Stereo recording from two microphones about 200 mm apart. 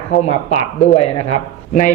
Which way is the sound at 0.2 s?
35° left (ahead or behind).